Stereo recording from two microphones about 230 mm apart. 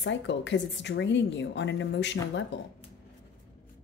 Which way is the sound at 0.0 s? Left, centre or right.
Left.